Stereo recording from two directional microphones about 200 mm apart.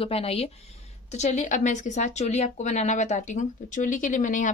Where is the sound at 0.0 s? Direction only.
30° left (ahead or behind).